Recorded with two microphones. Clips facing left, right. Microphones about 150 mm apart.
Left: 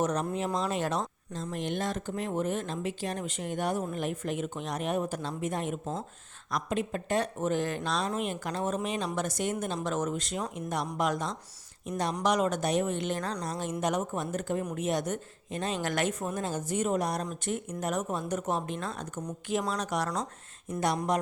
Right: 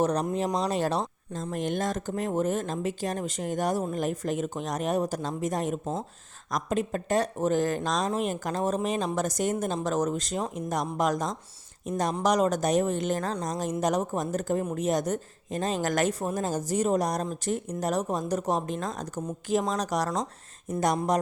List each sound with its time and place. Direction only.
0.0 s speech: 35° right (ahead or behind)
1.3 s speech: 45° right (ahead or behind)